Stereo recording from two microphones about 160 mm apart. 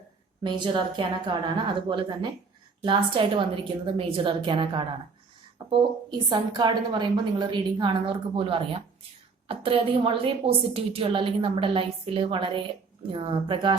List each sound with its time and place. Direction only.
0.4 s a woman's voice: 30° right (ahead or behind)